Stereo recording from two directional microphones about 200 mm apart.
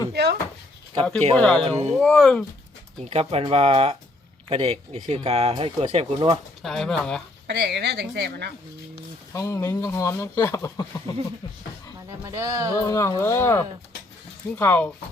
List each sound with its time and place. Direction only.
0.1 s speech: 55° right (ahead or behind)
1.4 s speech: 5° left (ahead or behind)
1.6 s speech: 30° right (ahead or behind)
2.0 s speech: 5° left (ahead or behind)
3.0 s speech: 30° right (ahead or behind)
6.6 s speech: centre (ahead or behind)
7.4 s a woman's voice: 55° right (ahead or behind)
9.3 s speech: 15° left (ahead or behind)
12.2 s speech: 15° right (ahead or behind)
12.7 s speech: 15° left (ahead or behind)